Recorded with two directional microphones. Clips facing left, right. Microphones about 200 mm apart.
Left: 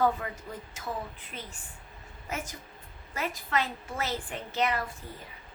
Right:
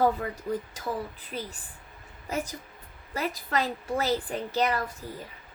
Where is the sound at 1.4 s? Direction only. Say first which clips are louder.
Right 9 dB; 35° right (ahead or behind).